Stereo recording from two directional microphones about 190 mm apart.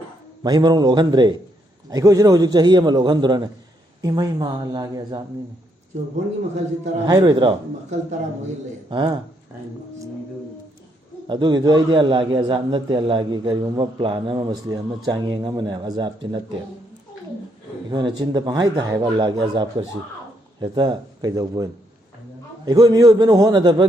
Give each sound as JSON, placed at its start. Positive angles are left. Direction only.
{"t": 0.4, "sound": "a man's voice", "side_deg": -20}
{"t": 7.1, "sound": "a man's voice", "side_deg": -20}
{"t": 11.3, "sound": "a man's voice", "side_deg": -25}
{"t": 17.9, "sound": "a man's voice", "side_deg": -25}